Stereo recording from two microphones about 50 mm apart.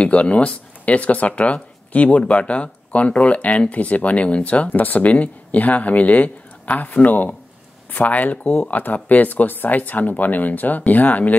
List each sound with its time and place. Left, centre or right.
0.0 s speech: left
4.6 s speech: left